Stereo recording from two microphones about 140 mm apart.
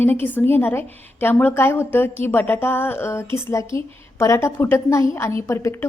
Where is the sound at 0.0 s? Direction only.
15° left (ahead or behind).